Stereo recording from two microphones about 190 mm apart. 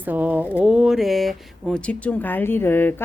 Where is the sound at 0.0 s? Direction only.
10° right (ahead or behind).